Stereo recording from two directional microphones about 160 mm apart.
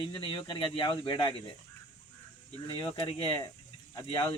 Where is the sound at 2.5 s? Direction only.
30° left (ahead or behind).